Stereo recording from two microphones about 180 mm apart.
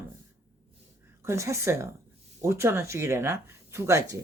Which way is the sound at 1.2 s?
15° right (ahead or behind).